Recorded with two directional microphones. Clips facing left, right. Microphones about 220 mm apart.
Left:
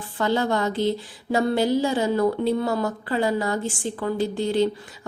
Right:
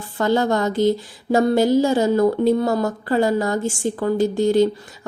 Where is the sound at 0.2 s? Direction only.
45° right (ahead or behind).